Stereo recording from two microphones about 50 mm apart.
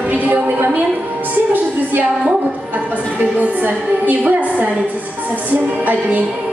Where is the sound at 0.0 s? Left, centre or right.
Right.